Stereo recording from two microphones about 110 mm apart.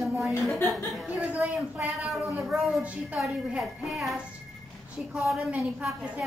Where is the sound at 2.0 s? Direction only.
Centre (ahead or behind).